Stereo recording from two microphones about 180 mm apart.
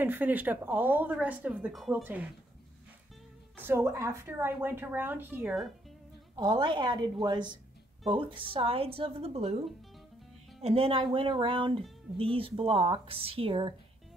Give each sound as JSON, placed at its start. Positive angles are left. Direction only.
{"t": 0.0, "sound": "a woman's voice", "side_deg": -10}
{"t": 3.5, "sound": "a woman's voice", "side_deg": -10}
{"t": 6.3, "sound": "a woman's voice", "side_deg": -25}
{"t": 10.6, "sound": "a woman's voice", "side_deg": -35}